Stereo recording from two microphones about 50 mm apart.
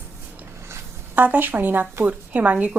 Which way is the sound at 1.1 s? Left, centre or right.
Right.